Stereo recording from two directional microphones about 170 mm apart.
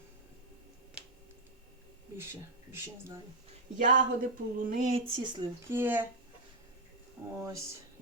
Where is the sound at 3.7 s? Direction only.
50° right (ahead or behind).